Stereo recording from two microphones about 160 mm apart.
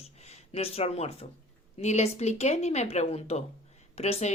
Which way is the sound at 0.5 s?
40° left (ahead or behind).